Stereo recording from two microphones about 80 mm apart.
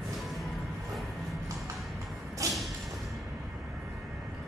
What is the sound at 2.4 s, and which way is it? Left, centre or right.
Whip, right.